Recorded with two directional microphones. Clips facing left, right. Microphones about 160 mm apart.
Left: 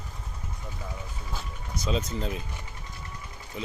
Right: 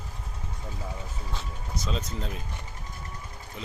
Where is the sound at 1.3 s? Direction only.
Centre (ahead or behind).